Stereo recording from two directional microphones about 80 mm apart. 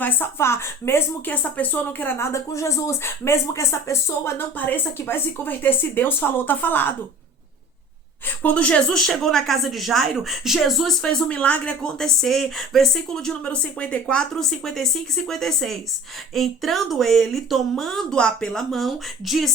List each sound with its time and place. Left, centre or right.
0.0 s a woman's voice: left
1.4 s speech: left
8.4 s speech: centre